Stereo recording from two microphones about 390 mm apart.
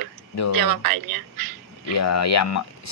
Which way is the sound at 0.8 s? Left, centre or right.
Right.